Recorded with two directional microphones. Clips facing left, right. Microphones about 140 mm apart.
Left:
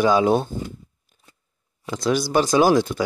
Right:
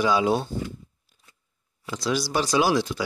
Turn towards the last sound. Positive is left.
turn(degrees=50)  # may be behind; listen again after turning